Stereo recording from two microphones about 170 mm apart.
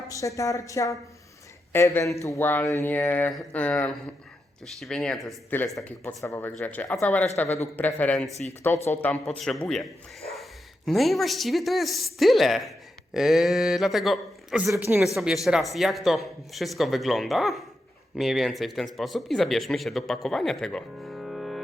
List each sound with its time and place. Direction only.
0.1 s a woman's voice: 20° left (ahead or behind); by 5.3 s centre (ahead or behind)
5.5 s speech: 15° left (ahead or behind)